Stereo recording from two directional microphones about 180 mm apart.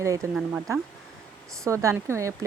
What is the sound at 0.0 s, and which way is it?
Speech, 15° right (ahead or behind).